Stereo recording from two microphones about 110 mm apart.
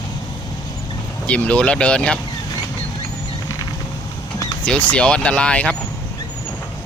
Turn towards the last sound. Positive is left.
turn(degrees=10)  # may be behind; listen again after turning